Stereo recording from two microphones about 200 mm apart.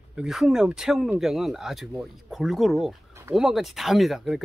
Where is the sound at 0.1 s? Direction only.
5° right (ahead or behind).